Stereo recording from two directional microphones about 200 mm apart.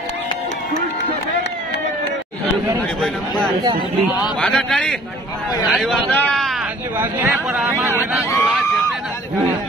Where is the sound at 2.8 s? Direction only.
5° left (ahead or behind).